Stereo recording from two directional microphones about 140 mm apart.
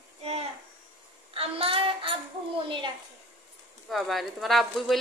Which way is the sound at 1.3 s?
40° right (ahead or behind).